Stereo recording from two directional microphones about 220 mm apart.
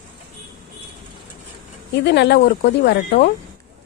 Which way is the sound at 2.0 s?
50° left (ahead or behind).